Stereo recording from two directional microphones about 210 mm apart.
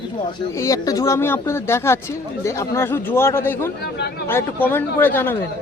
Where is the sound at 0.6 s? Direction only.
15° left (ahead or behind).